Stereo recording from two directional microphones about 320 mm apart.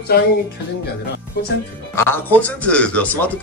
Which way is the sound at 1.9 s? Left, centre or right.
Centre.